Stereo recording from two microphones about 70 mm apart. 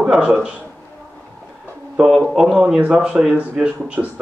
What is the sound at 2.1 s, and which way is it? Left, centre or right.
Speech, centre.